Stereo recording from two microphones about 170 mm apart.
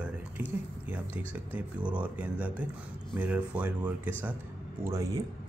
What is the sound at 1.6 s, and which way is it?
Speech, 10° right (ahead or behind).